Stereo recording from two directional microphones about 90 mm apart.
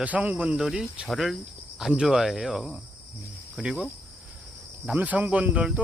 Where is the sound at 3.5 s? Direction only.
10° right (ahead or behind).